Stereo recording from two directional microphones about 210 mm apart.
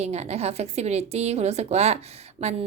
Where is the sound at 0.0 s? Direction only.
30° right (ahead or behind).